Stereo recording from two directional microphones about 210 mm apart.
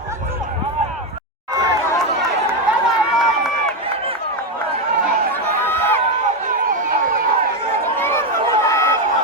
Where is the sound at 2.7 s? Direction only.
5° right (ahead or behind).